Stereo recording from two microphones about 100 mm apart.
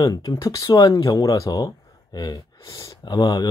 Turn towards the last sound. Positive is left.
turn(degrees=45)  # may be behind; listen again after turning